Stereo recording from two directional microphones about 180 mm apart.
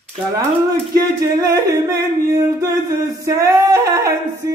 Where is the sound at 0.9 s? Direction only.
20° right (ahead or behind).